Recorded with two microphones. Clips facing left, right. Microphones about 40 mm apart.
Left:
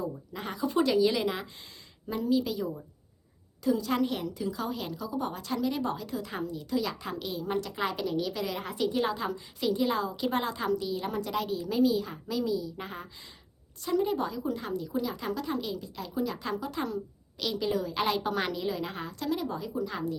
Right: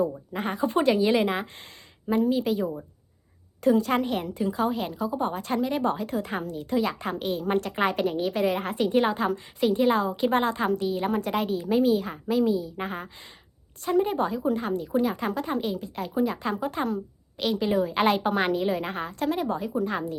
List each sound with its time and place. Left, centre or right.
0.3 s speech: right